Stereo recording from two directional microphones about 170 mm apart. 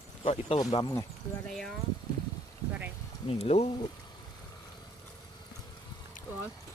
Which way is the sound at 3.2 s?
35° left (ahead or behind).